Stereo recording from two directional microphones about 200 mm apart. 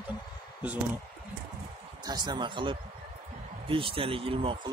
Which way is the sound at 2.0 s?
20° right (ahead or behind).